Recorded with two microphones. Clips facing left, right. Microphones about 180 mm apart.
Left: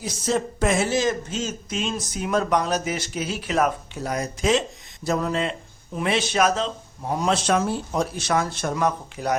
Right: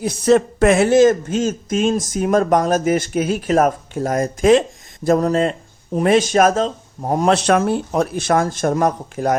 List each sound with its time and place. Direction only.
0.0 s speech: 60° right (ahead or behind)
7.3 s speech: 65° right (ahead or behind); by 9.3 s 45° right (ahead or behind)